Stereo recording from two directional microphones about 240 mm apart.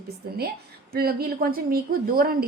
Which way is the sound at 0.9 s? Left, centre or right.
Right.